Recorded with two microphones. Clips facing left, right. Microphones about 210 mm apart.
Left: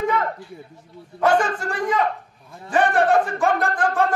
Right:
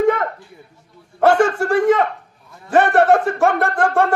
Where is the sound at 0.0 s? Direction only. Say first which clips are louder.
Right 6 dB; 55° right (ahead or behind).